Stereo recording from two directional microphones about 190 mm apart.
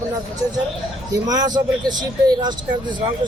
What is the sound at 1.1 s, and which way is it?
Speech, 20° right (ahead or behind).